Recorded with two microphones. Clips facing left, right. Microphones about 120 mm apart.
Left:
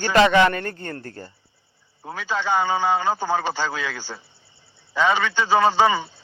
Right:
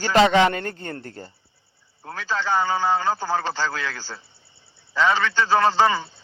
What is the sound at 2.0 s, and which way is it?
A man's voice, 15° left (ahead or behind).